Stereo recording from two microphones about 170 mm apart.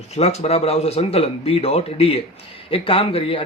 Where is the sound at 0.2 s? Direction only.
35° left (ahead or behind).